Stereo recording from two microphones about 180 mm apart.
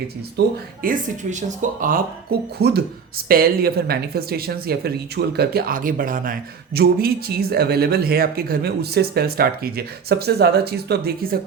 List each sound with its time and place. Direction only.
0.3 s speech: 50° right (ahead or behind)
2.6 s speech: 65° right (ahead or behind)
3.2 s speech: 55° right (ahead or behind)